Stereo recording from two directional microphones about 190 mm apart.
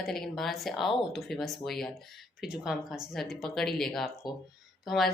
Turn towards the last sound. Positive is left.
turn(degrees=0)  # may be behind; listen again after turning